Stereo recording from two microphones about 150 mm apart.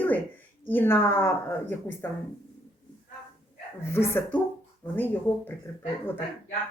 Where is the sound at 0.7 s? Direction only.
15° left (ahead or behind).